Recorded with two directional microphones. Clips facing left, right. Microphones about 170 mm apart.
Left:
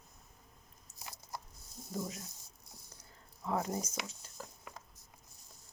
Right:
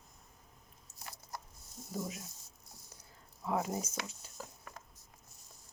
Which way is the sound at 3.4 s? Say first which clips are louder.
Right 1 dB; 10° right (ahead or behind).